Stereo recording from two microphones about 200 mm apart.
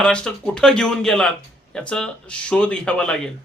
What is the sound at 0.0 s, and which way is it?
Speech, 5° left (ahead or behind).